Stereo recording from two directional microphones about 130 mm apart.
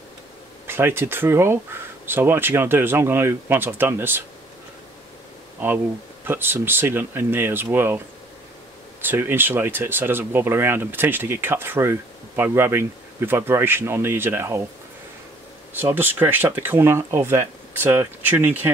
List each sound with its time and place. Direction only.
0.7 s speech: 20° right (ahead or behind)
6.2 s speech: 15° right (ahead or behind)
9.0 s speech: 15° right (ahead or behind)
15.7 s speech: 15° right (ahead or behind)